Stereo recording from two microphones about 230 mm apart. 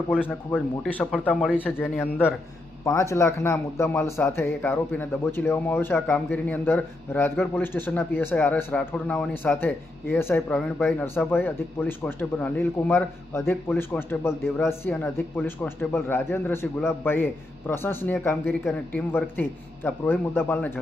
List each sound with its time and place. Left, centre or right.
0.3 s speech: centre